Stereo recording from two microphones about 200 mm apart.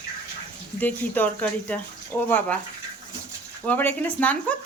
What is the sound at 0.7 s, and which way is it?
Speech, 10° left (ahead or behind).